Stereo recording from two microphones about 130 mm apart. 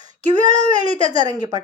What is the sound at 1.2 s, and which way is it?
Speech, 30° right (ahead or behind).